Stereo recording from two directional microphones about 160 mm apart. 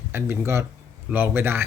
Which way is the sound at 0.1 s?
15° right (ahead or behind).